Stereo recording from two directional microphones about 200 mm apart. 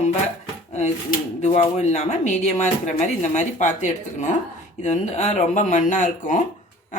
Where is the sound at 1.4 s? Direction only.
35° left (ahead or behind).